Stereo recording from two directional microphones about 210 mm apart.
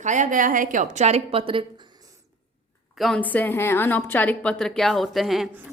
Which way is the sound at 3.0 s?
5° left (ahead or behind).